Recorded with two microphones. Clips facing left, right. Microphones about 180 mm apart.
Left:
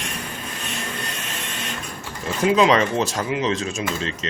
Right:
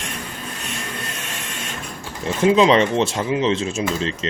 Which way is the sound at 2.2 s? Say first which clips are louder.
Right 3 dB; 25° right (ahead or behind).